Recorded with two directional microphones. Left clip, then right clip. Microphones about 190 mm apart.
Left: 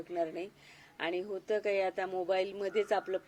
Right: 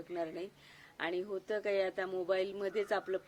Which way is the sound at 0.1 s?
Centre (ahead or behind).